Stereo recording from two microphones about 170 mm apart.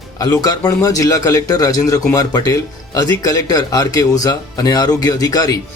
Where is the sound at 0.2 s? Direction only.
20° left (ahead or behind).